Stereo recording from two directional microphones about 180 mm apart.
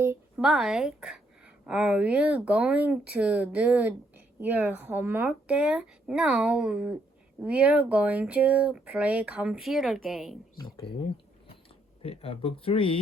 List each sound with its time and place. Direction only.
0.3 s speech: centre (ahead or behind)
12.0 s speech: 30° left (ahead or behind)